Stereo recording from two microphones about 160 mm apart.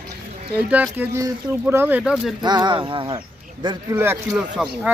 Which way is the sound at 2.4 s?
25° right (ahead or behind).